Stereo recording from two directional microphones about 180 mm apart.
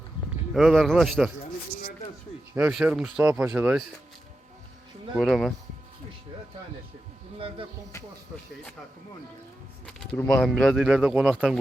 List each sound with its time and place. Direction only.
0.5 s speech: centre (ahead or behind)
2.6 s speech: 5° right (ahead or behind)
5.1 s speech: centre (ahead or behind)
7.3 s speech: 30° right (ahead or behind)
9.8 s speech: 5° left (ahead or behind)